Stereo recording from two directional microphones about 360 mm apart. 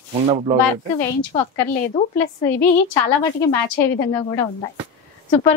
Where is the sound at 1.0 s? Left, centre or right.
Centre.